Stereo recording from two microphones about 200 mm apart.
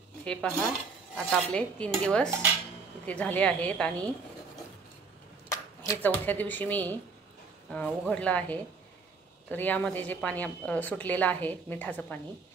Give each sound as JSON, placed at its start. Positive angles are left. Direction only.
{"t": 0.2, "sound": "speech", "side_deg": 5}
{"t": 1.1, "sound": "dishes", "side_deg": 5}
{"t": 3.1, "sound": "a woman's voice", "side_deg": 5}
{"t": 5.5, "sound": "a woman's voice", "side_deg": 10}